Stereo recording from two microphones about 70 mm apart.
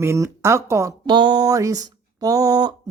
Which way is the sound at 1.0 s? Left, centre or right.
Right.